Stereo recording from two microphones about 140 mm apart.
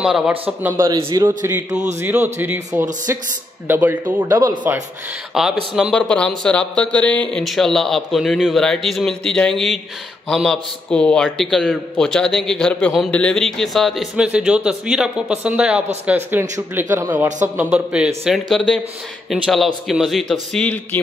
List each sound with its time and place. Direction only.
0.0 s a man's voice: 5° right (ahead or behind)
1.1 s a man's voice: 25° right (ahead or behind)
5.3 s a man's voice: centre (ahead or behind); by 17.3 s 20° right (ahead or behind)
17.6 s a man's voice: 10° right (ahead or behind); by 21.0 s 10° left (ahead or behind)